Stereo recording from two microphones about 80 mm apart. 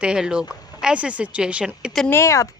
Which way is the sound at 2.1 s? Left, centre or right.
Left.